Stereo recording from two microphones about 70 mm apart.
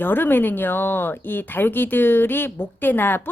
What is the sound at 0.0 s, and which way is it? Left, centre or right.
Speech, left.